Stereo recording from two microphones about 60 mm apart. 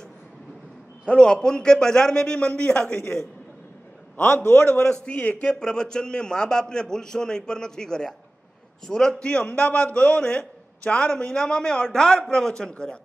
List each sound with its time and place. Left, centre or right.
1.0 s a man's voice: centre
4.3 s a man's voice: left
4.8 s a man's voice: centre
9.2 s a man's voice: centre